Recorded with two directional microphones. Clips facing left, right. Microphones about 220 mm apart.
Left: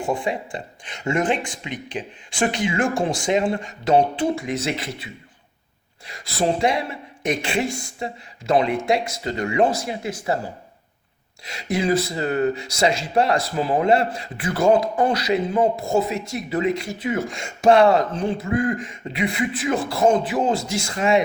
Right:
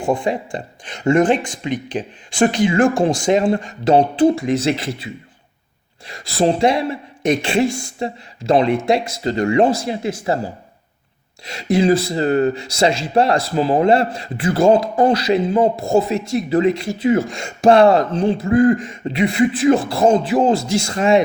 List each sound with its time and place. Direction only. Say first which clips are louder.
0.1 s speech: right 6 dB; 40° right (ahead or behind)
6.1 s speech: right 5 dB; 30° right (ahead or behind)
11.4 s speech: right 7 dB; 35° right (ahead or behind)